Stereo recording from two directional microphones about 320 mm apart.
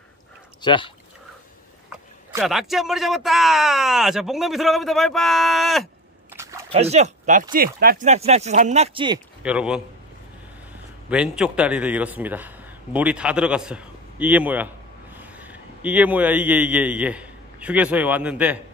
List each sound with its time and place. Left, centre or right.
0.6 s speech: centre
2.3 s a man's voice: centre
6.7 s speech: centre
9.4 s a man's voice: centre
11.1 s a man's voice: centre